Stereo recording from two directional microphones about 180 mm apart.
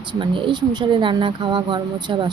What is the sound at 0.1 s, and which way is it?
Speech, 25° right (ahead or behind).